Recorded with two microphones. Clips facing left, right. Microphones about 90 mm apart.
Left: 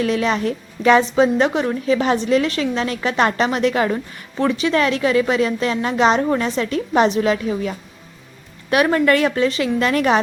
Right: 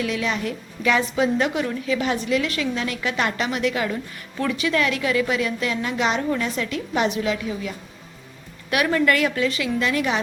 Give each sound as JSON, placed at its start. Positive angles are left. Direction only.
{"t": 0.0, "sound": "a woman's voice", "side_deg": 40}